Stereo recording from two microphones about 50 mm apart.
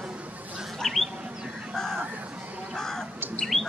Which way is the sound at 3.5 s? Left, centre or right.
Centre.